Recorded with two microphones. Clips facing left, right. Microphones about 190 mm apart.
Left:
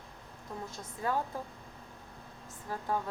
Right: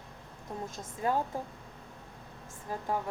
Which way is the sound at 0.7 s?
20° right (ahead or behind).